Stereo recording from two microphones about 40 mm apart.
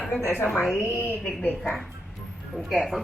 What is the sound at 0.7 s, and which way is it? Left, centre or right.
Speech, left.